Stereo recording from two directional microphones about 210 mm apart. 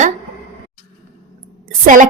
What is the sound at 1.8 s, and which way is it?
Speech, 35° right (ahead or behind).